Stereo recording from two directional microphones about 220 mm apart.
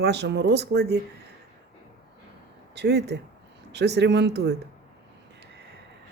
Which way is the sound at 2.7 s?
50° right (ahead or behind).